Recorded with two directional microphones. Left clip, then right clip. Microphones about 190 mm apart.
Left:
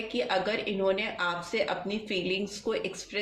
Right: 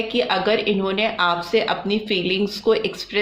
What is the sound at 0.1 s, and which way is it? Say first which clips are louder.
Speech: right 8 dB; 35° right (ahead or behind).